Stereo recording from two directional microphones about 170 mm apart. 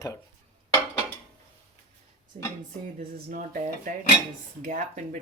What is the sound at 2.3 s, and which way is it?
Speech, 50° right (ahead or behind).